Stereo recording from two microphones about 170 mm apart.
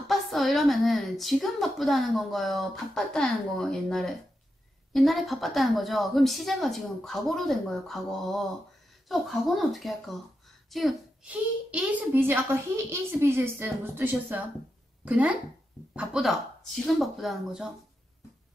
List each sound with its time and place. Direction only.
0.1 s a woman's voice: centre (ahead or behind)